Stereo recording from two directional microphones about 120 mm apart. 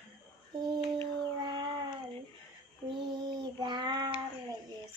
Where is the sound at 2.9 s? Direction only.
40° right (ahead or behind).